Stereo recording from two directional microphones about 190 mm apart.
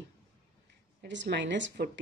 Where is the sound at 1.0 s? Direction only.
65° right (ahead or behind).